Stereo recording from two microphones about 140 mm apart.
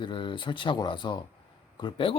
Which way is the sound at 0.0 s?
35° left (ahead or behind).